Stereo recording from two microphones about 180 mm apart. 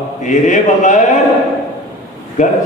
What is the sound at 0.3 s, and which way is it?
Speech, 40° left (ahead or behind).